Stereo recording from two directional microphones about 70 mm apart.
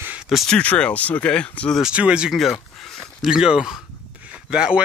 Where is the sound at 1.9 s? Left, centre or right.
Centre.